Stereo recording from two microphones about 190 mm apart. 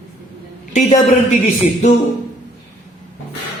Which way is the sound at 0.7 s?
40° left (ahead or behind).